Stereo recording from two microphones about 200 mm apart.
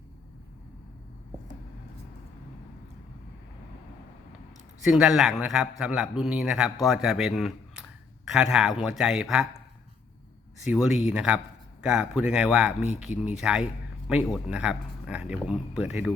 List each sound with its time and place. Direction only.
4.8 s a man's voice: 5° right (ahead or behind)
10.6 s a man's voice: 5° right (ahead or behind)